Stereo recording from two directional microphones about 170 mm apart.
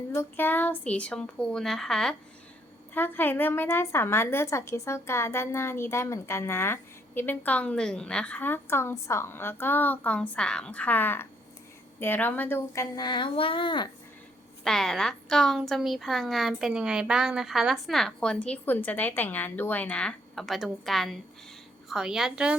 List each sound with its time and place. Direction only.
0.1 s a woman's voice: 15° left (ahead or behind); by 13.8 s 30° left (ahead or behind)
14.6 s a woman's voice: 5° left (ahead or behind)